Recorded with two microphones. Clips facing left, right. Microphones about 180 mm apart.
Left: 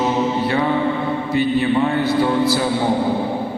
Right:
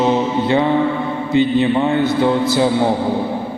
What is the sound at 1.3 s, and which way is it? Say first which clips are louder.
A man's voice: right 4 dB; 20° right (ahead or behind).